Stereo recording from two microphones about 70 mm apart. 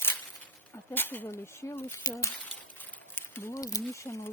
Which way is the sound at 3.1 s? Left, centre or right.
Left.